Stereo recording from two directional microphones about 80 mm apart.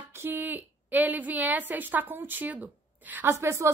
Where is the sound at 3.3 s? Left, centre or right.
Right.